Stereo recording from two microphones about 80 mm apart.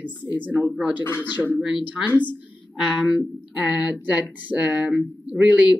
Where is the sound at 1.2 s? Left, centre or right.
Right.